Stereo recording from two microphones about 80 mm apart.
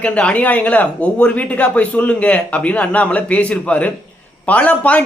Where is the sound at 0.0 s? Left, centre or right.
Centre.